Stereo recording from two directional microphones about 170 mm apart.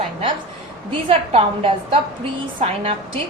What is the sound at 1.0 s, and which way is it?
Speech, 35° right (ahead or behind).